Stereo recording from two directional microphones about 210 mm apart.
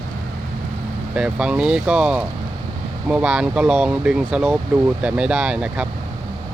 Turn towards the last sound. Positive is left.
turn(degrees=-5)  # may be behind; listen again after turning